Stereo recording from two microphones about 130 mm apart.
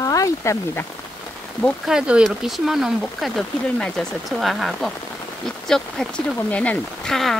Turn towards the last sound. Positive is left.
turn(degrees=5)  # may be behind; listen again after turning